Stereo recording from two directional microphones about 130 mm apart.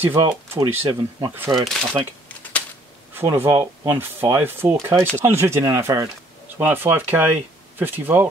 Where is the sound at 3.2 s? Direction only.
20° right (ahead or behind).